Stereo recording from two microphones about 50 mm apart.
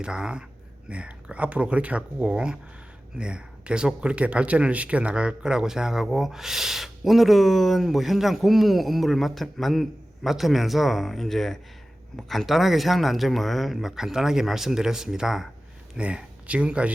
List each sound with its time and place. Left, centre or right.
0.0 s speech: centre
16.0 s speech: right